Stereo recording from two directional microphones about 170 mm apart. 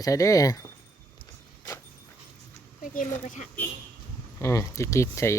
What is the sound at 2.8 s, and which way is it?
Speech, 50° left (ahead or behind).